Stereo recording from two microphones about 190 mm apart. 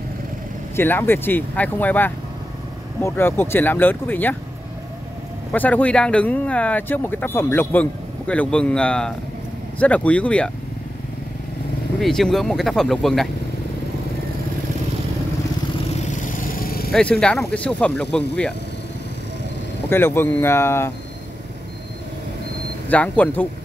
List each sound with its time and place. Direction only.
0.7 s speech: 10° left (ahead or behind)
5.5 s speech: 10° left (ahead or behind)
12.0 s speech: centre (ahead or behind)
16.0 s vehicle: 45° left (ahead or behind)
16.9 s speech: 5° left (ahead or behind)
19.9 s speech: 10° left (ahead or behind)
22.8 s speech: 10° left (ahead or behind)